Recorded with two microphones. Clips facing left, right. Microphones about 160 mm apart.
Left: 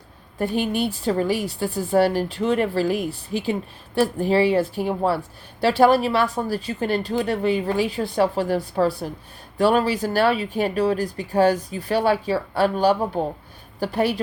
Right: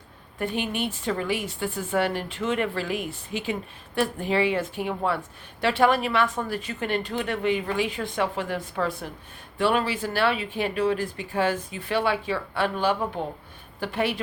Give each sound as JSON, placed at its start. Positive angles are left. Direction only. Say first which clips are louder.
{"t": 0.3, "sound": "a woman's voice", "louder": "left 5 dB", "side_deg": 35}